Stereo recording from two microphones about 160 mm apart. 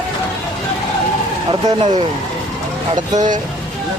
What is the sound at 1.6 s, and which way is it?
Speech, 30° right (ahead or behind).